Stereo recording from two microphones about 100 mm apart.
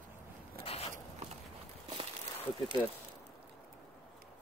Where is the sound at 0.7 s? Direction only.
75° left (ahead or behind).